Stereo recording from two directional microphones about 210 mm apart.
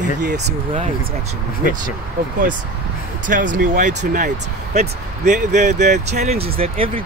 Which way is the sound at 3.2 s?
40° right (ahead or behind).